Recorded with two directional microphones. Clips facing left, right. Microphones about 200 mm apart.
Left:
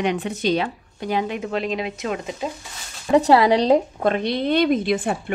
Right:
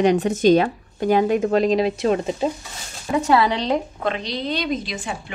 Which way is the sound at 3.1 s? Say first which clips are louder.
Left 4 dB; 35° left (ahead or behind).